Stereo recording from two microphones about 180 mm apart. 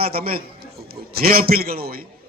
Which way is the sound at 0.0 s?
55° right (ahead or behind).